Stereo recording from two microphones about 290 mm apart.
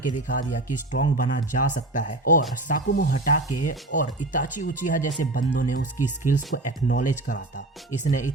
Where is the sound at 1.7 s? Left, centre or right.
Left.